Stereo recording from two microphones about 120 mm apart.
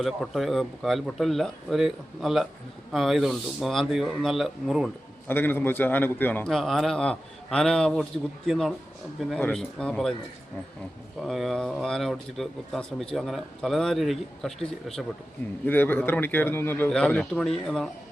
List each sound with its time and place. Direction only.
0.0 s speech: centre (ahead or behind)
5.3 s a man's voice: 15° left (ahead or behind)
6.5 s speech: centre (ahead or behind)
11.2 s speech: centre (ahead or behind)
15.6 s a man's voice: 15° left (ahead or behind)